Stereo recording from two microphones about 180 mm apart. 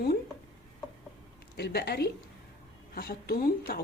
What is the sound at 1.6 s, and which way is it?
Speech, 65° left (ahead or behind).